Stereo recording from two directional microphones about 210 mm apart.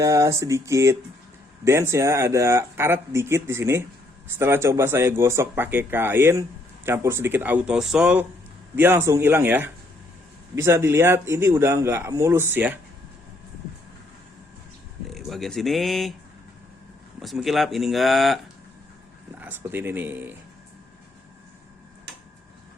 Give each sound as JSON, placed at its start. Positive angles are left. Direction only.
{"t": 0.0, "sound": "speech", "side_deg": -15}
{"t": 15.0, "sound": "speech", "side_deg": 0}
{"t": 17.2, "sound": "speech", "side_deg": 0}
{"t": 19.4, "sound": "speech", "side_deg": -10}